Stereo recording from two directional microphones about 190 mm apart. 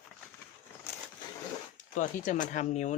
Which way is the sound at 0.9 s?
10° left (ahead or behind).